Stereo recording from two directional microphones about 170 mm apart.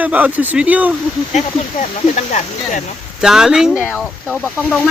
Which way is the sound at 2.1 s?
45° left (ahead or behind).